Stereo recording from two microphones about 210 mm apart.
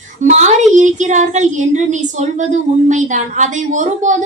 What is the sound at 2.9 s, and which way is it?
A woman's voice, 35° right (ahead or behind).